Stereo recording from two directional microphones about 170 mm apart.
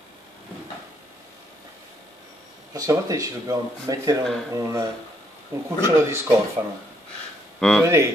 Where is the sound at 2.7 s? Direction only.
20° right (ahead or behind).